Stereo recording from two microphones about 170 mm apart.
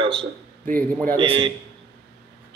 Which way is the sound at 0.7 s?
10° left (ahead or behind).